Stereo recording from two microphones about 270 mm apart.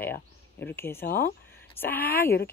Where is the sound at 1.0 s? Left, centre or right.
Left.